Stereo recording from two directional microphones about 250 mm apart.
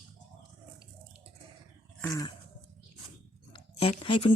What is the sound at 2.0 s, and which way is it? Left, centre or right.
Dog, centre.